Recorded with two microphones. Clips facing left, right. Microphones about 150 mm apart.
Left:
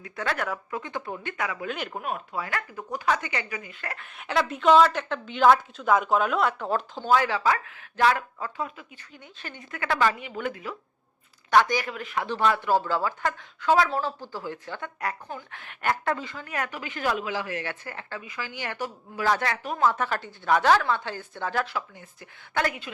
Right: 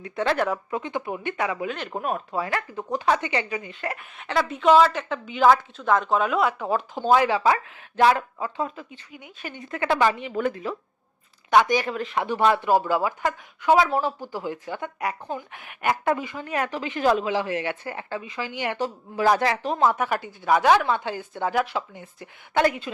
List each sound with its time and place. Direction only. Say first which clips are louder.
0.0 s speech: right 6 dB; 30° right (ahead or behind)
1.6 s speech: right 2 dB; 5° left (ahead or behind)
1.9 s speech: right 5 dB; 40° right (ahead or behind)
2.5 s speech: right 5 dB; 25° right (ahead or behind)
4.2 s speech: right 1 dB; centre (ahead or behind)
6.9 s speech: right 5 dB; 20° right (ahead or behind)
8.6 s speech: right 4 dB; 35° right (ahead or behind)
9.1 s speech: right 4 dB; 10° right (ahead or behind)
9.7 s speech: right 3 dB; 25° right (ahead or behind)
10.2 s speech: right 6 dB; 35° right (ahead or behind)
11.5 s speech: right 2 dB; 10° right (ahead or behind)
11.8 s speech: right 4 dB; 30° right (ahead or behind)
12.2 s speech: right 3 dB; 15° right (ahead or behind)